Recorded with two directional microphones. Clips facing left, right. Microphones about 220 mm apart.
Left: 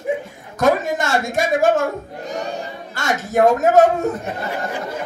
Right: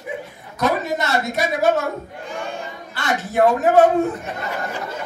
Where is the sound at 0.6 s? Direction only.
50° left (ahead or behind).